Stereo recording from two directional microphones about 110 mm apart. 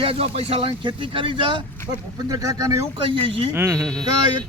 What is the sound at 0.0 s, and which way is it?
Speech, 60° right (ahead or behind).